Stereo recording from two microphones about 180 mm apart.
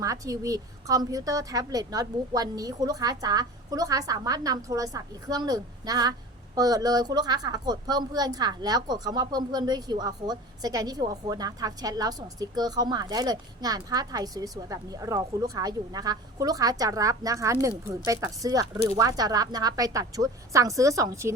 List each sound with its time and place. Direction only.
0.0 s a woman's voice: 20° right (ahead or behind)